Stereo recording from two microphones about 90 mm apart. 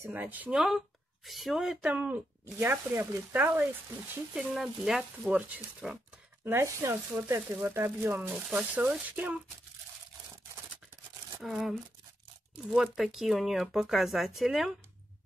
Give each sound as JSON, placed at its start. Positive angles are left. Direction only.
{"t": 0.1, "sound": "speech", "side_deg": -20}
{"t": 0.5, "sound": "speech", "side_deg": 0}
{"t": 2.4, "sound": "speech", "side_deg": -25}
{"t": 4.6, "sound": "speech", "side_deg": -5}
{"t": 6.4, "sound": "speech", "side_deg": -30}
{"t": 8.4, "sound": "speech", "side_deg": -15}
{"t": 11.4, "sound": "speech", "side_deg": 0}